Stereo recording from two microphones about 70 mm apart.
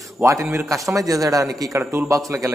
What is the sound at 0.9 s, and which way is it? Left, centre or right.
A man's voice, right.